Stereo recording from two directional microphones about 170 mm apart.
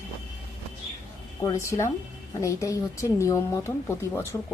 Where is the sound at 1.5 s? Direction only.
20° left (ahead or behind).